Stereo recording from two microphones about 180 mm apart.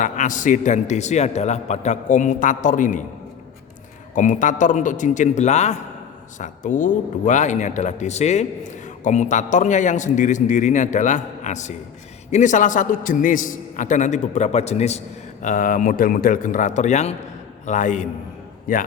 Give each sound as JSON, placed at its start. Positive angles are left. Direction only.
{"t": 0.0, "sound": "a man's voice", "side_deg": 45}
{"t": 4.1, "sound": "a man's voice", "side_deg": 45}